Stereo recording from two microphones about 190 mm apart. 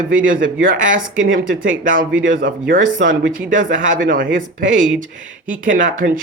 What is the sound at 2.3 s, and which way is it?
Speech, 45° right (ahead or behind).